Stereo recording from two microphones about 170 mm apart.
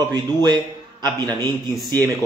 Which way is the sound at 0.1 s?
25° right (ahead or behind).